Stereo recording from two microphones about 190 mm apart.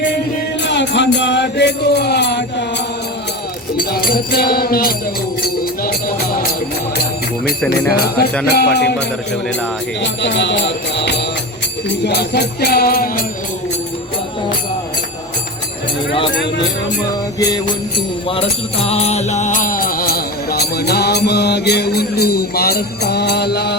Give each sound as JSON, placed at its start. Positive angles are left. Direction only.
{"t": 0.6, "sound": "music", "side_deg": 70}
{"t": 3.8, "sound": "music", "side_deg": 50}
{"t": 7.9, "sound": "music", "side_deg": 55}
{"t": 10.0, "sound": "jingle bell", "side_deg": 70}
{"t": 12.0, "sound": "music", "side_deg": 60}
{"t": 18.3, "sound": "music", "side_deg": 30}